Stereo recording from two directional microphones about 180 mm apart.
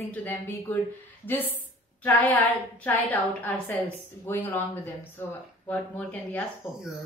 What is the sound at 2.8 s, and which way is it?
A woman's voice, 10° left (ahead or behind).